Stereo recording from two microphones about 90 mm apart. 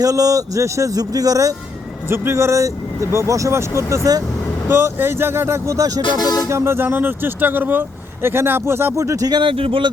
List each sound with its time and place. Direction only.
0.0 s speech: 40° right (ahead or behind)
2.0 s speech: 25° right (ahead or behind)
4.7 s speech: 25° right (ahead or behind)
6.0 s speech: 45° left (ahead or behind)
6.5 s speech: 30° right (ahead or behind)
9.4 s speech: 85° right